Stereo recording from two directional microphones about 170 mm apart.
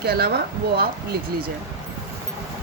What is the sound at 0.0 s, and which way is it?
Speech, 70° right (ahead or behind).